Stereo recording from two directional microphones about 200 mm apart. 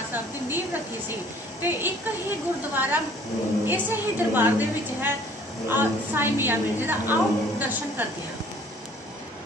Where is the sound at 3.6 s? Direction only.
10° right (ahead or behind).